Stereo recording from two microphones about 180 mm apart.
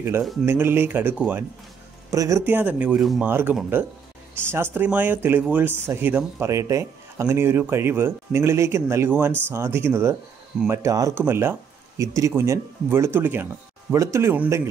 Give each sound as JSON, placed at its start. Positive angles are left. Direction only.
{"t": 0.2, "sound": "speech", "side_deg": 0}
{"t": 0.5, "sound": "speech", "side_deg": -10}